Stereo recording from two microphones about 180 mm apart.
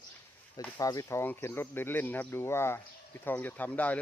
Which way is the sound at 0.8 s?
20° left (ahead or behind).